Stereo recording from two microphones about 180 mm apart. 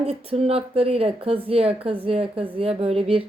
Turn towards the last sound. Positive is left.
turn(degrees=-30)  # may be behind; listen again after turning